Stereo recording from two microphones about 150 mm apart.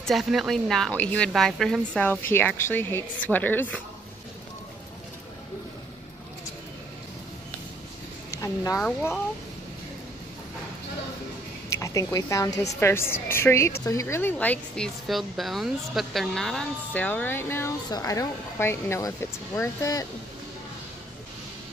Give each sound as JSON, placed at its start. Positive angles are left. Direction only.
{"t": 0.0, "sound": "speech", "side_deg": 0}
{"t": 2.0, "sound": "speech", "side_deg": 15}
{"t": 8.3, "sound": "a sound", "side_deg": 20}
{"t": 8.7, "sound": "speech", "side_deg": 10}
{"t": 11.8, "sound": "a woman's voice", "side_deg": 25}
{"t": 15.0, "sound": "speech", "side_deg": 0}